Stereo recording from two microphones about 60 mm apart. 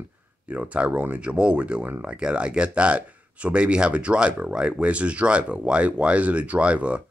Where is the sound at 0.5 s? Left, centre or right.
Right.